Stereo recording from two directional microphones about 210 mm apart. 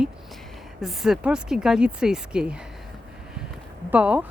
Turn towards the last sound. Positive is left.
turn(degrees=-5)  # may be behind; listen again after turning